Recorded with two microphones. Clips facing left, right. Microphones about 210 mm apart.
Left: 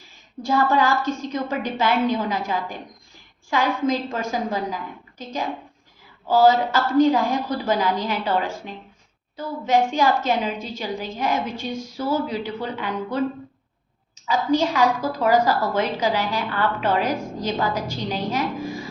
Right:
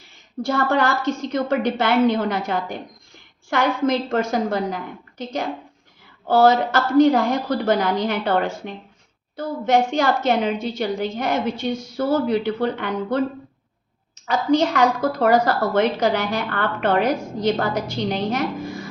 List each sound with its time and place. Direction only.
0.4 s a woman's voice: 70° right (ahead or behind)
14.3 s a woman's voice: 65° right (ahead or behind)
17.4 s a woman's voice: 70° right (ahead or behind)